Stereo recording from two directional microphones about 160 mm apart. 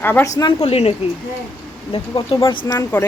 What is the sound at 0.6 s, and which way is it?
Speech, 40° left (ahead or behind).